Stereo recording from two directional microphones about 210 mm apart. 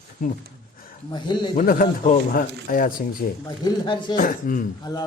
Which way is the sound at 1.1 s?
20° left (ahead or behind).